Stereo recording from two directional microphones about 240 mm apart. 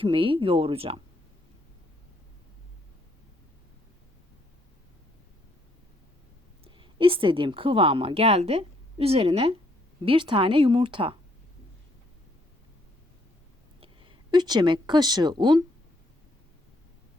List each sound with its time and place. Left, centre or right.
0.0 s speech: right
6.7 s a woman's voice: right
13.8 s speech: right